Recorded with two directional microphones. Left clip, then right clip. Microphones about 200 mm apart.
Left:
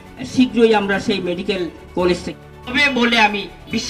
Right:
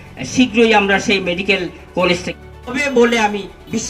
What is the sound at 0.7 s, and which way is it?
Speech, 15° right (ahead or behind).